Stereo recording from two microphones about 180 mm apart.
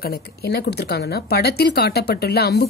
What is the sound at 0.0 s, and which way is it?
A woman's voice, 60° left (ahead or behind).